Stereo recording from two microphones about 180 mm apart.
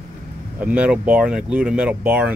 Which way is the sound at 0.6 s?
10° right (ahead or behind).